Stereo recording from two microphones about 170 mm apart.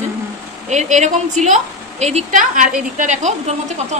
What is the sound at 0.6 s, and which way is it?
A woman's voice, 45° right (ahead or behind).